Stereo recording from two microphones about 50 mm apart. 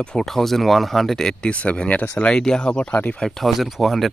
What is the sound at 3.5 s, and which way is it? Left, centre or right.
Speech, centre.